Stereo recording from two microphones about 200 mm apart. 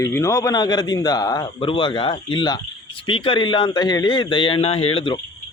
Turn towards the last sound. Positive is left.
turn(degrees=25)  # may be behind; listen again after turning